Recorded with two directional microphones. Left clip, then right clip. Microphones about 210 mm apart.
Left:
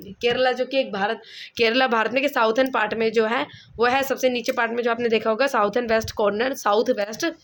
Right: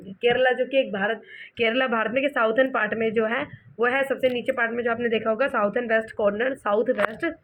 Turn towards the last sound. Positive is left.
turn(degrees=70)  # may be behind; listen again after turning